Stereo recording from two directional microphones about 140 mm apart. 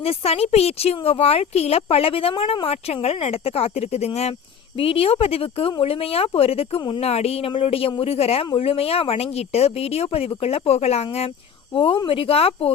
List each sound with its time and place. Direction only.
0.0 s speech: 45° left (ahead or behind)
7.0 s speech: 50° left (ahead or behind)
11.7 s speech: 35° left (ahead or behind)